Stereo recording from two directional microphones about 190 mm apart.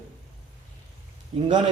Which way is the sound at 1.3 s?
30° right (ahead or behind).